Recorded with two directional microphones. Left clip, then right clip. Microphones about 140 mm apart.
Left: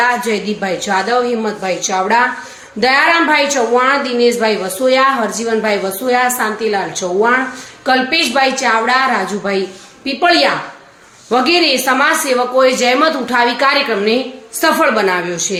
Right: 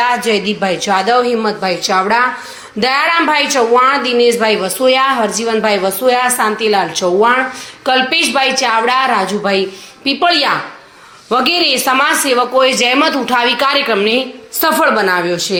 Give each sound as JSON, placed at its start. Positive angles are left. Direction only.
{"t": 0.0, "sound": "a woman's voice", "side_deg": -15}